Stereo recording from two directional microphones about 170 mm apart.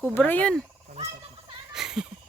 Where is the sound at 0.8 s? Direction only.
40° right (ahead or behind).